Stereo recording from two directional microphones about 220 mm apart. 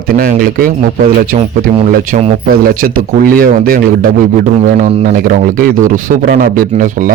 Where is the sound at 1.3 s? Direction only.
25° right (ahead or behind).